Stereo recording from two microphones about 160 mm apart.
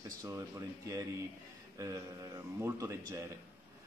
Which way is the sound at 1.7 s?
20° right (ahead or behind).